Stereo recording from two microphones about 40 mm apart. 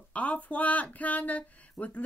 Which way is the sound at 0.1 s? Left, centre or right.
Left.